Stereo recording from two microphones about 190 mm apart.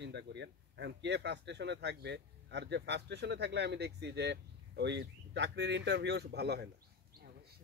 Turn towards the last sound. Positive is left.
turn(degrees=-60)  # may be behind; listen again after turning